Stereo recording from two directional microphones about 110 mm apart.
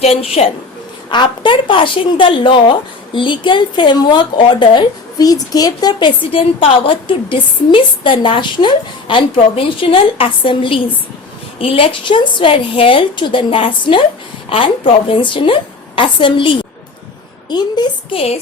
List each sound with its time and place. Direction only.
0.0 s a woman's voice: 70° left (ahead or behind)
1.1 s a woman's voice: 45° left (ahead or behind)
6.3 s a woman's voice: 55° left (ahead or behind); by 17.8 s 40° left (ahead or behind)
18.1 s a woman's voice: 65° left (ahead or behind)